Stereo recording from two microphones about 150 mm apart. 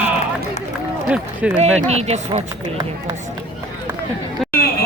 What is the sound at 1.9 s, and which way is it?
Speech, 45° right (ahead or behind).